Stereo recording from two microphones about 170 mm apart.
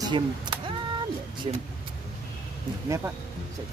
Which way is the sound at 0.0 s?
25° right (ahead or behind).